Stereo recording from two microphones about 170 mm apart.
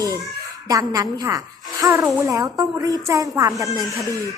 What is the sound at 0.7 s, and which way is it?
Speech, 20° right (ahead or behind).